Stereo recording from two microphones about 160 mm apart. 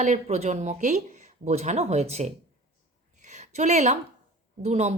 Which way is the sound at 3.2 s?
45° right (ahead or behind).